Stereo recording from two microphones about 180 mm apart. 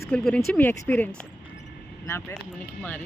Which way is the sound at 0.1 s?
5° left (ahead or behind).